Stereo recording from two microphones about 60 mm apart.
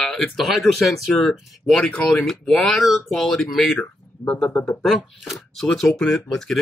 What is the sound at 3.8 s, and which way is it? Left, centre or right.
Speech, left.